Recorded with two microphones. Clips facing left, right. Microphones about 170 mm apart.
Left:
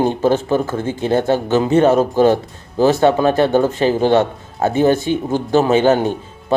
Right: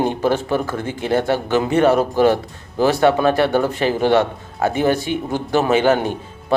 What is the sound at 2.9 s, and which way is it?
A man's voice, 25° left (ahead or behind).